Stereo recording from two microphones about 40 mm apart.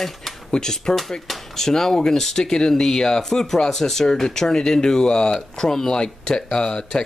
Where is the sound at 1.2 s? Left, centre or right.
Centre.